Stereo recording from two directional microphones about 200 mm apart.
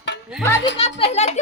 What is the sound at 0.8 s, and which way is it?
Speech, 35° left (ahead or behind).